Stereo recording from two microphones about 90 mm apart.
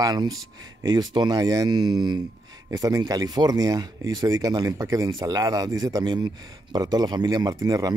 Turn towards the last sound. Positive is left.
turn(degrees=-45)  # may be behind; listen again after turning